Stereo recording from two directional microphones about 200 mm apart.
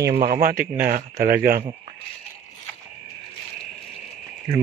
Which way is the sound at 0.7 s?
45° right (ahead or behind).